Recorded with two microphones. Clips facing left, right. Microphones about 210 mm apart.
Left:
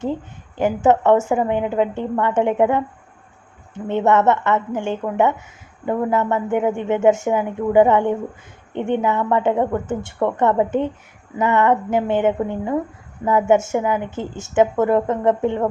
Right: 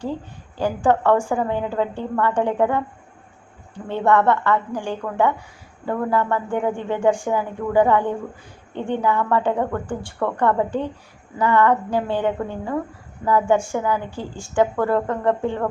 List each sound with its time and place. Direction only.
0.0 s a woman's voice: 20° left (ahead or behind)